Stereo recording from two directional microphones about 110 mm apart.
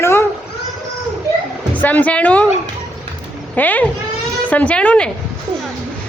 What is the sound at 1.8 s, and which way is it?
Speech, 15° left (ahead or behind).